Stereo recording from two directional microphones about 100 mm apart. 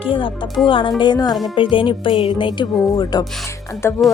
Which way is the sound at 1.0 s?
45° left (ahead or behind).